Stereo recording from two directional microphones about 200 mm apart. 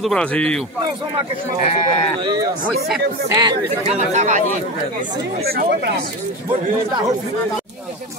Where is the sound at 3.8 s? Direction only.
35° right (ahead or behind).